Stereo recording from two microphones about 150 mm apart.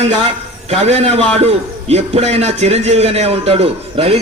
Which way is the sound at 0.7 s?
45° right (ahead or behind).